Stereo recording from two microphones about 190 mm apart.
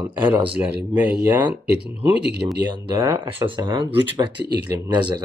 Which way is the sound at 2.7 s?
20° right (ahead or behind).